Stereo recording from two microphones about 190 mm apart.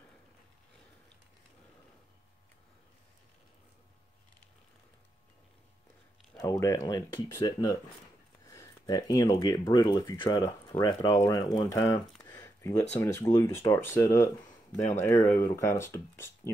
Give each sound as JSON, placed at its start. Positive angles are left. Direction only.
{"t": 6.3, "sound": "speech", "side_deg": 15}
{"t": 12.3, "sound": "a sound", "side_deg": 15}
{"t": 12.9, "sound": "speech", "side_deg": 15}